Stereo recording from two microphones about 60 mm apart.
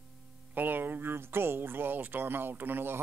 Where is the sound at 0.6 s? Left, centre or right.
Right.